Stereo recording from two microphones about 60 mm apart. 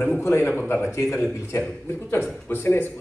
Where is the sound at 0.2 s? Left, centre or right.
Left.